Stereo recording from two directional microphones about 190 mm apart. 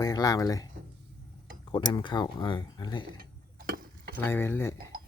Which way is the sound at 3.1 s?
55° right (ahead or behind).